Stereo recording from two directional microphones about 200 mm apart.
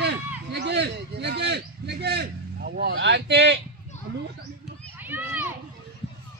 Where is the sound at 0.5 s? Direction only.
55° right (ahead or behind).